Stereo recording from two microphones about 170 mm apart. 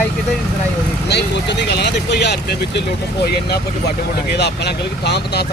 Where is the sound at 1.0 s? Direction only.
80° left.